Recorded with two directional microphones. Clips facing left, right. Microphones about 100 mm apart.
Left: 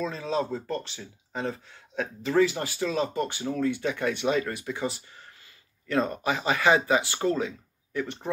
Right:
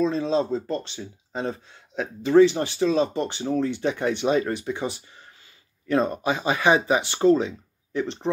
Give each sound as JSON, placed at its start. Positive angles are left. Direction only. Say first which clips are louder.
{"t": 0.0, "sound": "speech", "louder": "right 6 dB", "side_deg": -25}